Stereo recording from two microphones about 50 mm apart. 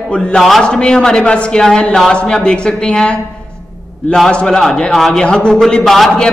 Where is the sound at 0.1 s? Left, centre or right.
Centre.